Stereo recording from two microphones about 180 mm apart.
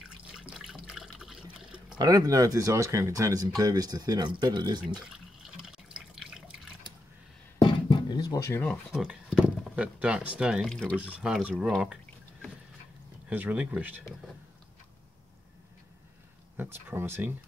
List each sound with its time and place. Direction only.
0.3 s water: 5° right (ahead or behind)
2.0 s speech: 20° right (ahead or behind)
5.0 s water: 5° right (ahead or behind)
7.6 s beatboxing: 25° left (ahead or behind)
8.9 s speech: 5° right (ahead or behind)
11.0 s speech: 5° right (ahead or behind)
16.5 s speech: 10° right (ahead or behind)